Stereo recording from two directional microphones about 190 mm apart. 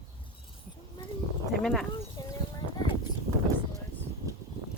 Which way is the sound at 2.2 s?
20° left (ahead or behind).